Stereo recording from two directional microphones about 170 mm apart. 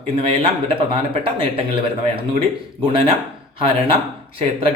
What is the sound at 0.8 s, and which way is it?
Speech, 35° right (ahead or behind).